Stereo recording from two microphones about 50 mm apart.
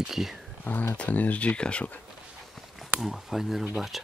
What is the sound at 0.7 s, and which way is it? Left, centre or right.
Speech, left.